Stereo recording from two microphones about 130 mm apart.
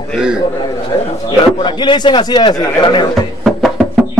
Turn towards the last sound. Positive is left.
turn(degrees=0)  # may be behind; listen again after turning